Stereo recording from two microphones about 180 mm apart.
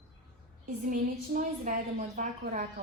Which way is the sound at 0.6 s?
50° right (ahead or behind).